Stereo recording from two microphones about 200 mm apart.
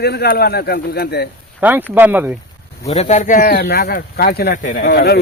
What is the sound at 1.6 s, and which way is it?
Speech, 5° right (ahead or behind).